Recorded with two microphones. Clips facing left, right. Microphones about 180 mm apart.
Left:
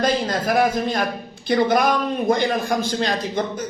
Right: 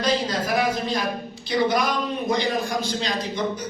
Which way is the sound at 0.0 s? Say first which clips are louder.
Left 3 dB; 50° left (ahead or behind).